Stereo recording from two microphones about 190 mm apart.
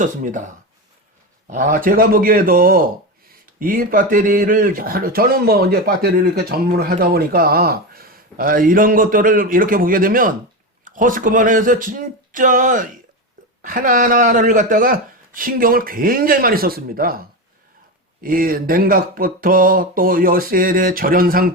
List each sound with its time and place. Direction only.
0.0 s speech: 40° right (ahead or behind)